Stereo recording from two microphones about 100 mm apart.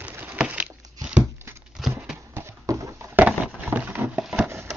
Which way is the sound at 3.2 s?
10° right (ahead or behind).